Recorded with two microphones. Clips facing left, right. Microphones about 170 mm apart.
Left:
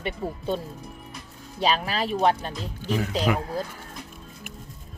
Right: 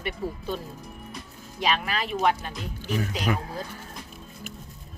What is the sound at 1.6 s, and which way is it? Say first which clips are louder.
Speech: left 2 dB; 30° left (ahead or behind).